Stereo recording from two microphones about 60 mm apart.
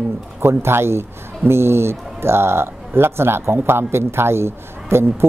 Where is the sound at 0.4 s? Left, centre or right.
Right.